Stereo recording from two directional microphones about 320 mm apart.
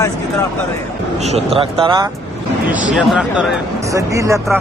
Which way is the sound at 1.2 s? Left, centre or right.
Centre.